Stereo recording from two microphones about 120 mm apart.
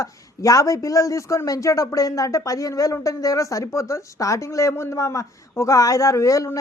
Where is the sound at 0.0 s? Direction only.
25° left (ahead or behind).